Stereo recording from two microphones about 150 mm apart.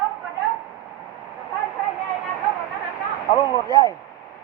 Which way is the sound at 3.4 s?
25° left (ahead or behind).